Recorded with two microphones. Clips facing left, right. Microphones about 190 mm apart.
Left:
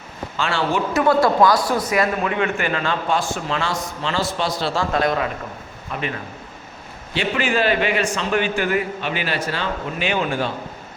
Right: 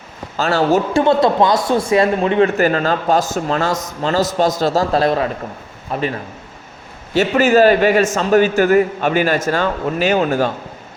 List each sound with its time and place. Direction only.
0.3 s speech: 40° right (ahead or behind)
1.0 s a man's voice: 25° right (ahead or behind); by 10.5 s 45° right (ahead or behind)